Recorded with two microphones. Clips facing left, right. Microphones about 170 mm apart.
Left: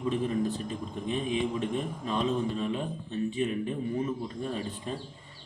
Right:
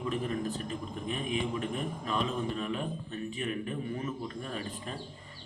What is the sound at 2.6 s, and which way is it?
A man's voice, 25° left (ahead or behind).